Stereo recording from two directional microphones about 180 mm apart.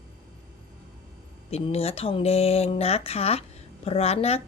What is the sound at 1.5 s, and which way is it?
Speech, 35° left (ahead or behind).